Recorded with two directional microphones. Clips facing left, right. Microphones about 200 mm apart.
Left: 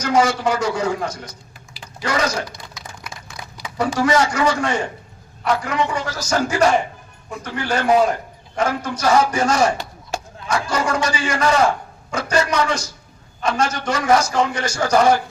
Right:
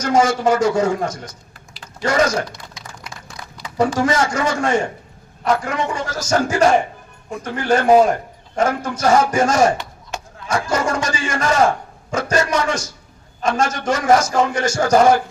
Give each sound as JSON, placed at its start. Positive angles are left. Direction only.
{"t": 0.0, "sound": "a man's voice", "side_deg": -45}
{"t": 3.4, "sound": "a sound", "side_deg": 15}
{"t": 3.8, "sound": "a man's voice", "side_deg": -45}